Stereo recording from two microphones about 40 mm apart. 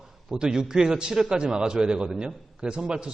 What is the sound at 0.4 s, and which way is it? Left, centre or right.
A man's voice, centre.